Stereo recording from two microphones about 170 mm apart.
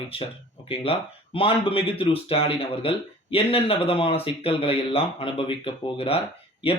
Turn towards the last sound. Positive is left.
turn(degrees=35)  # may be behind; listen again after turning